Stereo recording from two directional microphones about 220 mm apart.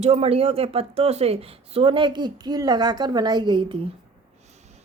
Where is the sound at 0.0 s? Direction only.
25° right (ahead or behind).